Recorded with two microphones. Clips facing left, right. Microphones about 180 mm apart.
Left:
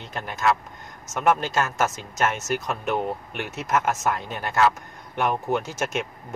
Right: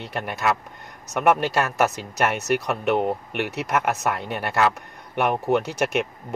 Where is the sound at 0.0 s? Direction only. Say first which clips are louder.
Even; 65° right (ahead or behind).